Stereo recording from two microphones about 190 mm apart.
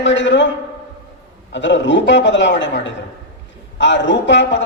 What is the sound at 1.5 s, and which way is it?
Speech, 70° left (ahead or behind).